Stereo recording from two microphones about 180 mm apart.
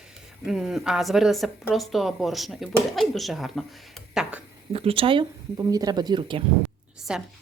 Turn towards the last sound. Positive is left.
turn(degrees=-5)  # may be behind; listen again after turning